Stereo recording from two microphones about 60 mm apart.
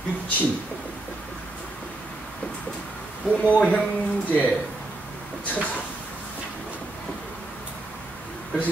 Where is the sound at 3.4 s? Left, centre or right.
Left.